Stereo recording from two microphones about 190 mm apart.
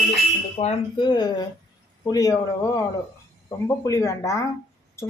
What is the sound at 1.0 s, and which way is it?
Speech, 20° left (ahead or behind).